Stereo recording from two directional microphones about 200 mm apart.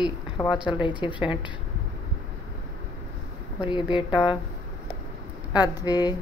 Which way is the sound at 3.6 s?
25° left (ahead or behind).